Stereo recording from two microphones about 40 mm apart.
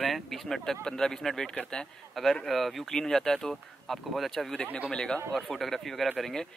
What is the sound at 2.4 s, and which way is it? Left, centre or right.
Speech, centre.